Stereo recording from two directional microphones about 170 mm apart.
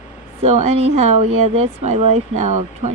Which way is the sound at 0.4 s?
40° right (ahead or behind).